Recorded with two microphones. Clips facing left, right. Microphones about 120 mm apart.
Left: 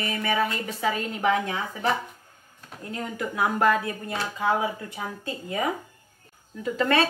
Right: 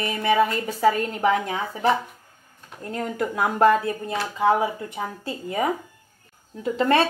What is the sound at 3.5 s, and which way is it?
Speech, 30° right (ahead or behind).